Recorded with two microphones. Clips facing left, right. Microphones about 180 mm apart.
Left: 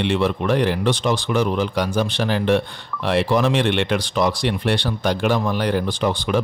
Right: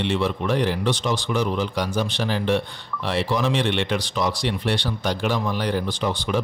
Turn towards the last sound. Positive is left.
turn(degrees=60)  # may be behind; listen again after turning